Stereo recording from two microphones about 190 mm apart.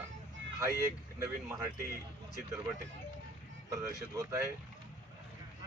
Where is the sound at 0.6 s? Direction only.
15° right (ahead or behind).